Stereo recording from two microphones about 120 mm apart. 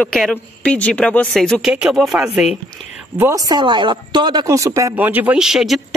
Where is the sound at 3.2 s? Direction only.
30° right (ahead or behind).